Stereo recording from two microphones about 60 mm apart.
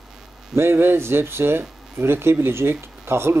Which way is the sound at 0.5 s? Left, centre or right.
Right.